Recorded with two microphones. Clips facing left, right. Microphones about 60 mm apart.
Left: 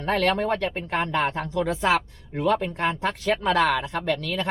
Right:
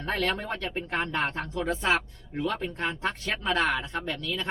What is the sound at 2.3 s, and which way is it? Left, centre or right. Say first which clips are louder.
Speech: left 7 dB; left.